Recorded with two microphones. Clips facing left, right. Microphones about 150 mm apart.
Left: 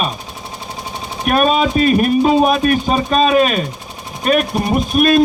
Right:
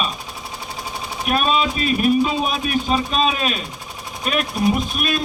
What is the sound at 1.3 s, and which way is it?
Speech, 50° left (ahead or behind).